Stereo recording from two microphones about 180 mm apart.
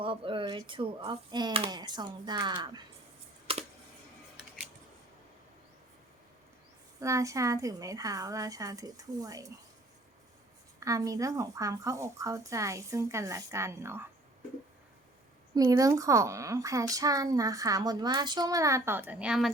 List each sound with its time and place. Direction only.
0.0 s a woman's voice: 30° right (ahead or behind)
3.5 s computer keyboard: 30° right (ahead or behind)
7.0 s a woman's voice: 15° right (ahead or behind)
10.8 s a woman's voice: 20° right (ahead or behind)
15.5 s a woman's voice: 20° right (ahead or behind); by 19.5 s 5° right (ahead or behind)